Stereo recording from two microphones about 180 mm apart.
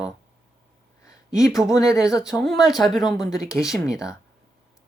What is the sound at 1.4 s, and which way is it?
Speech, centre (ahead or behind).